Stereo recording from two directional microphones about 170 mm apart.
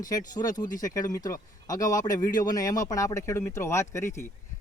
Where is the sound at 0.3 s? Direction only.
25° left (ahead or behind).